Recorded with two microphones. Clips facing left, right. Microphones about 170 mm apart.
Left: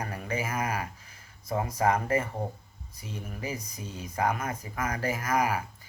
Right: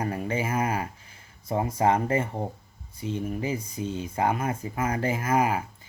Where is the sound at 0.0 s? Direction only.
25° right (ahead or behind).